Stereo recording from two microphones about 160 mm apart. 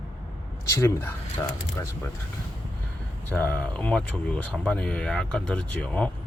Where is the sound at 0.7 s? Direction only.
20° left (ahead or behind).